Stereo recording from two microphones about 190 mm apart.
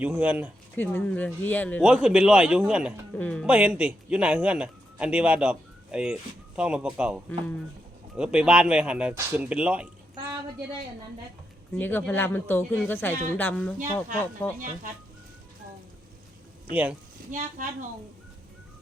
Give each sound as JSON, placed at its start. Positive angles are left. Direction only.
{"t": 0.0, "sound": "speech", "side_deg": -10}
{"t": 0.8, "sound": "speech", "side_deg": 10}
{"t": 1.8, "sound": "speech", "side_deg": -5}
{"t": 3.4, "sound": "speech", "side_deg": -5}
{"t": 7.3, "sound": "speech", "side_deg": 5}
{"t": 8.1, "sound": "speech", "side_deg": -5}
{"t": 11.8, "sound": "speech", "side_deg": 10}
{"t": 16.7, "sound": "speech", "side_deg": -10}
{"t": 17.3, "sound": "a woman's voice", "side_deg": -40}